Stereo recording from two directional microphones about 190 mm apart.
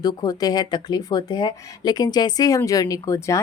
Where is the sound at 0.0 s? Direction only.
20° left (ahead or behind).